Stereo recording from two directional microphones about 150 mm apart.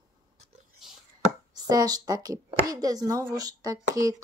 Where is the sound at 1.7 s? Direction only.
25° right (ahead or behind).